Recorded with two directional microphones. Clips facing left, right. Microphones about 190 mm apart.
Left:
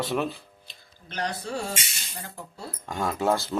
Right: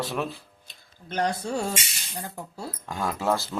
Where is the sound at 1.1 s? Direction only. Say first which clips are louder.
Right 5 dB; 50° right (ahead or behind).